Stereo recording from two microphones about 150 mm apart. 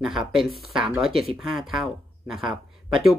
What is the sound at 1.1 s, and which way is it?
Speech, 40° right (ahead or behind).